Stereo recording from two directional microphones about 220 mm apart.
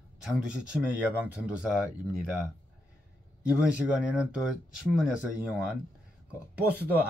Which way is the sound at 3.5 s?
5° right (ahead or behind).